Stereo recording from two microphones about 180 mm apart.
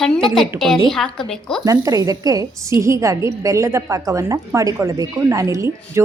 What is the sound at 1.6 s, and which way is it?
A woman's voice, 20° right (ahead or behind).